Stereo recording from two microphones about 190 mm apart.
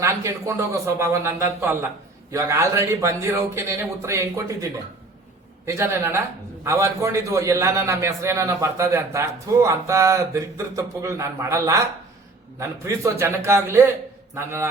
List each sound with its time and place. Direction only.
0.0 s a man's voice: 15° right (ahead or behind)